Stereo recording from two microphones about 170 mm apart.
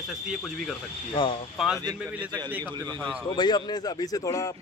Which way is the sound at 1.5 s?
Centre (ahead or behind).